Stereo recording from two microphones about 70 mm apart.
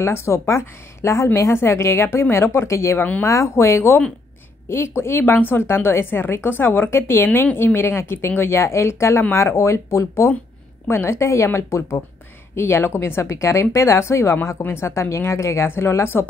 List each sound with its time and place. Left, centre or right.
0.0 s a woman's voice: left
3.0 s speech: left
3.3 s a woman's voice: left